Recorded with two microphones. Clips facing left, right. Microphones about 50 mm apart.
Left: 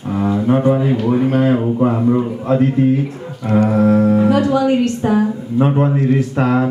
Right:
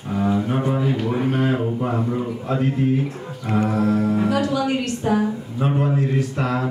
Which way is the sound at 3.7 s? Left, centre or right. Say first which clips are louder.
Left 8 dB; left.